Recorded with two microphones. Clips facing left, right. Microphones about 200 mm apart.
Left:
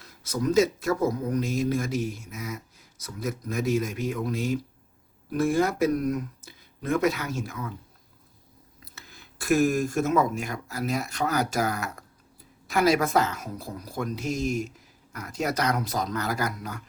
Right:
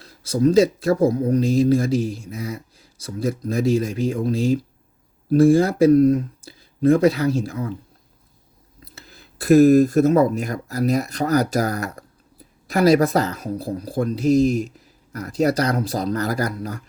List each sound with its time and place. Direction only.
0.0 s speech: 30° right (ahead or behind)
9.0 s speech: 35° right (ahead or behind)